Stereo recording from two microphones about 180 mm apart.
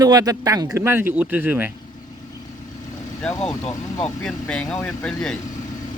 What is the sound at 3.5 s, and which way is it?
Speech, 20° left (ahead or behind).